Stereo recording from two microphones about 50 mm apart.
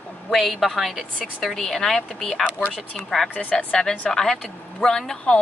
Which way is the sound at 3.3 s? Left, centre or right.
Left.